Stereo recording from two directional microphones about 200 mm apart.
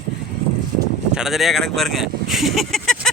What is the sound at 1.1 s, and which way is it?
Speech, centre (ahead or behind).